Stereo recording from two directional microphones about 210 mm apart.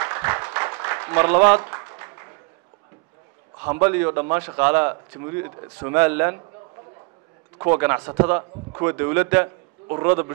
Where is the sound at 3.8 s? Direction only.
10° right (ahead or behind).